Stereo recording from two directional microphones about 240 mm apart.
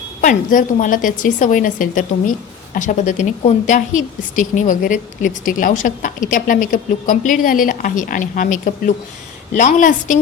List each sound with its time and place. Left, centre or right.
0.2 s a woman's voice: left